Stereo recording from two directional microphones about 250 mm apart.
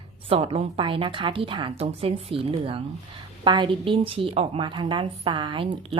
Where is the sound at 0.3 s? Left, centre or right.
Right.